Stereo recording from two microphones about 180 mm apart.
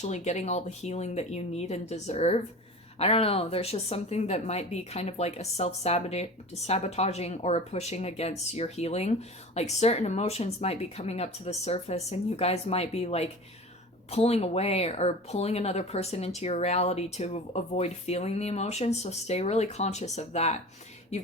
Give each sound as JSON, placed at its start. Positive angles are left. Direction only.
{"t": 0.0, "sound": "speech", "side_deg": 40}